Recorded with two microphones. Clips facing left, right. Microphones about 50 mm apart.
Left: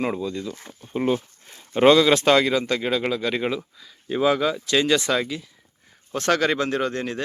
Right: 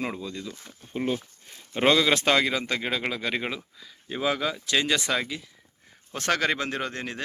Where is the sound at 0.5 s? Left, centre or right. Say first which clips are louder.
Left 5 dB; left.